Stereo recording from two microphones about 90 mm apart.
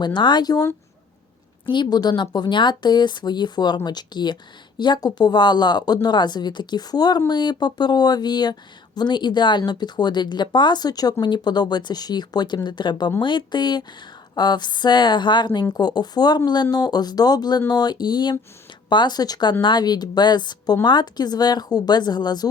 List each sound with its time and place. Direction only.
0.0 s speech: 55° left (ahead or behind)
1.7 s speech: 55° left (ahead or behind)